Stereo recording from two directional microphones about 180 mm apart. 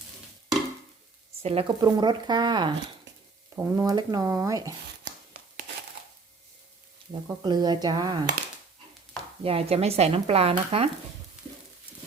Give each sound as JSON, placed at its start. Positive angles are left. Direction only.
{"t": 1.4, "sound": "speech", "side_deg": -30}
{"t": 7.3, "sound": "speech", "side_deg": -25}
{"t": 9.4, "sound": "speech", "side_deg": -30}